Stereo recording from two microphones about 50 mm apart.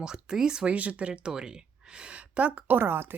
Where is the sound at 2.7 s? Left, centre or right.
Right.